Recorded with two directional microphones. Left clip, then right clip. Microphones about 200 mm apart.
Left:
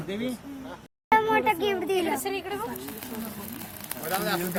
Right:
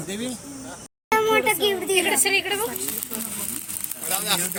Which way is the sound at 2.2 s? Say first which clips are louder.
Right 10 dB; 30° right (ahead or behind).